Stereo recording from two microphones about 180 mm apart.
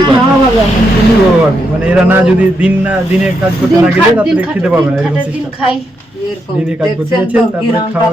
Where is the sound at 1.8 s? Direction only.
5° right (ahead or behind).